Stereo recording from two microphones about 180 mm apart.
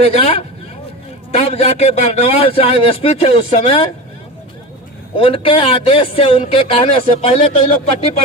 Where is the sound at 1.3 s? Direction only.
35° left (ahead or behind).